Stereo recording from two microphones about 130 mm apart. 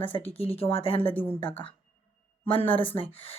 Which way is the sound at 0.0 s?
45° left (ahead or behind).